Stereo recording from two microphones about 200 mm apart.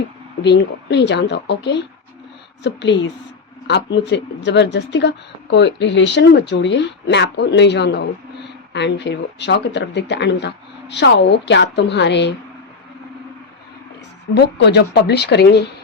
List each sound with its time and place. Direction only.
0.4 s speech: 60° left (ahead or behind)
14.3 s speech: 55° left (ahead or behind)